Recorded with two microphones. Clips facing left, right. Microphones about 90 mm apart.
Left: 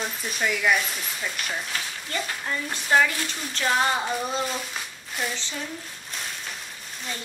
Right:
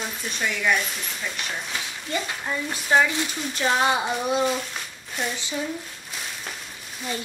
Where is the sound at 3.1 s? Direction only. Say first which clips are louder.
Right 3 dB; 20° right (ahead or behind).